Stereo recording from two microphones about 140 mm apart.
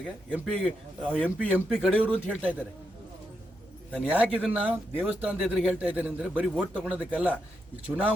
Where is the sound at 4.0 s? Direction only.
10° right (ahead or behind).